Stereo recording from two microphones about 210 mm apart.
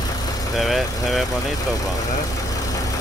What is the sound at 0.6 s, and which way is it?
Speech, centre (ahead or behind).